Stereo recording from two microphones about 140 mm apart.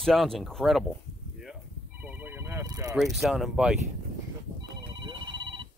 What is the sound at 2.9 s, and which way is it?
Speech, centre (ahead or behind).